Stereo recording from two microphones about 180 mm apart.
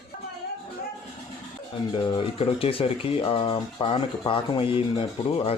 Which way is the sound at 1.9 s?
25° left (ahead or behind).